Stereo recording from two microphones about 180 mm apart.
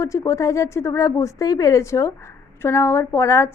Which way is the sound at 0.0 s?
15° left (ahead or behind).